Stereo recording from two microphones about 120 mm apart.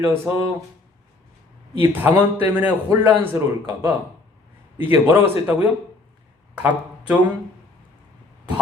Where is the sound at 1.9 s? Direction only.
15° right (ahead or behind).